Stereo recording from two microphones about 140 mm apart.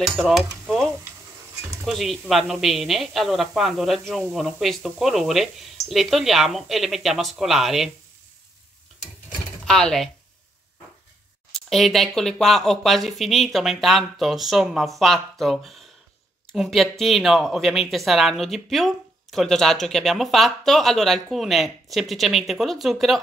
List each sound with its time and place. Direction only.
0.0 s stir: centre (ahead or behind)
1.9 s speech: centre (ahead or behind)
9.7 s speech: 5° left (ahead or behind)
11.5 s speech: centre (ahead or behind)